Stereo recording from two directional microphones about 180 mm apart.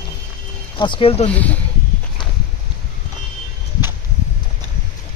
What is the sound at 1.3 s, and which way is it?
Speech, 10° left (ahead or behind).